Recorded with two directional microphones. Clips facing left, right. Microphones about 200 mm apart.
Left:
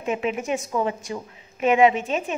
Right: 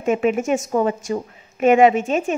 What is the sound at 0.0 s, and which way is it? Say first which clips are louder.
A woman's voice: right 7 dB; 50° right (ahead or behind).